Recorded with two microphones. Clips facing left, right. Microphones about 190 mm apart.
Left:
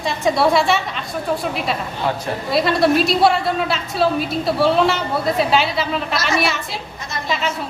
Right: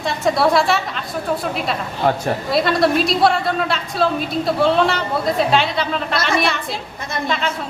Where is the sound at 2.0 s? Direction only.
45° right (ahead or behind).